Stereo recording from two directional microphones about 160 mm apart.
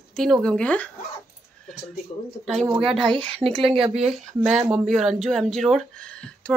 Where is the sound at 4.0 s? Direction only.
5° right (ahead or behind).